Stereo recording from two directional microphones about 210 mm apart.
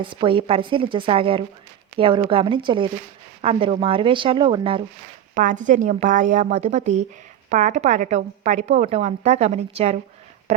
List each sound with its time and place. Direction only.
0.0 s a woman's voice: 25° right (ahead or behind)
5.3 s a woman's voice: 40° right (ahead or behind)